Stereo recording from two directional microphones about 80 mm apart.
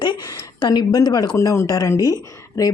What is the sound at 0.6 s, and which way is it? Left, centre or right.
Speech, left.